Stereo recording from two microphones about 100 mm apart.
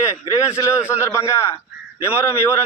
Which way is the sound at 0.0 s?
30° left (ahead or behind).